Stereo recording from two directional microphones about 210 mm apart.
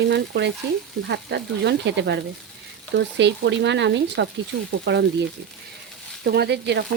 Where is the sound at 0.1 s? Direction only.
55° right (ahead or behind).